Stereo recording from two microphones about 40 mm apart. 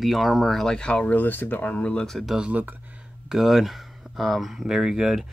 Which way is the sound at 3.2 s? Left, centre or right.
Centre.